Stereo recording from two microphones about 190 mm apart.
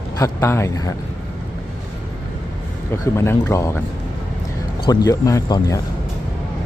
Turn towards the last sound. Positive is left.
turn(degrees=15)  # may be behind; listen again after turning